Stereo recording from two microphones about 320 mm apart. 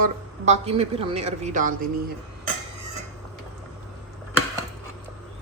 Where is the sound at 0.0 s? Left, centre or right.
Right.